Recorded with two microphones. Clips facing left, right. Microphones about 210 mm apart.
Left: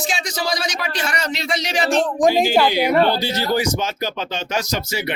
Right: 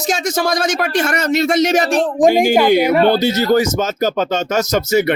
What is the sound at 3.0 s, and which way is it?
Speech, 50° right (ahead or behind).